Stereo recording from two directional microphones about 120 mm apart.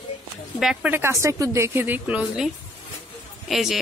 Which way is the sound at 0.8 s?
20° right (ahead or behind).